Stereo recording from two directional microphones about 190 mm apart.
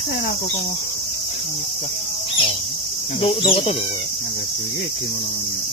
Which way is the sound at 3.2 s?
30° left (ahead or behind).